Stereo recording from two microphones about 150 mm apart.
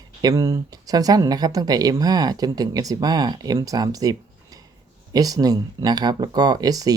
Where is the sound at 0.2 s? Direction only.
20° right (ahead or behind).